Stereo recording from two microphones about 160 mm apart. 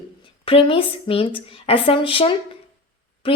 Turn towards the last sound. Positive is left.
turn(degrees=35)  # may be behind; listen again after turning